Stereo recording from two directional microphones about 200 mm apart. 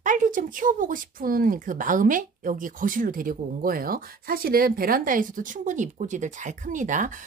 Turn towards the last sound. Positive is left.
turn(degrees=-40)  # may be behind; listen again after turning